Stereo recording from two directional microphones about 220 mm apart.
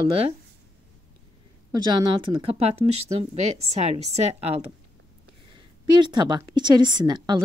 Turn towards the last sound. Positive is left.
turn(degrees=-20)  # may be behind; listen again after turning